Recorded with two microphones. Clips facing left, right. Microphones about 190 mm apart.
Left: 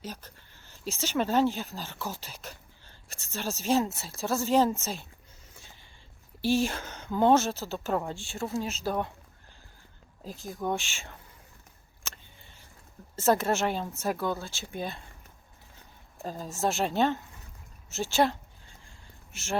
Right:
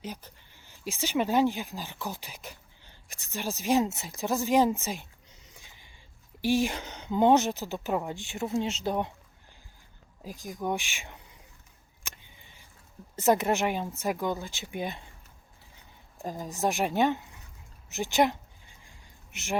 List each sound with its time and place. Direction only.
0.0 s speech: 15° right (ahead or behind)
5.6 s mechanisms: 15° right (ahead or behind)
6.4 s speech: 15° right (ahead or behind)
10.2 s speech: 15° right (ahead or behind)
12.0 s a sound: 15° right (ahead or behind)
13.1 s speech: 15° right (ahead or behind)
16.2 s speech: 15° right (ahead or behind)
17.8 s a sound: 15° right (ahead or behind)